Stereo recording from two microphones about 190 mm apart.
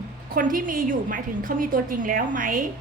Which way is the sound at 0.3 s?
45° right (ahead or behind).